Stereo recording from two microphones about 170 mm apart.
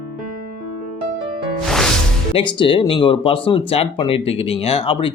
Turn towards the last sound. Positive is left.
turn(degrees=30)  # may be behind; listen again after turning